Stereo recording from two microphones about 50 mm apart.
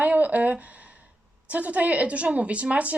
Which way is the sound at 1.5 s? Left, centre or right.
Right.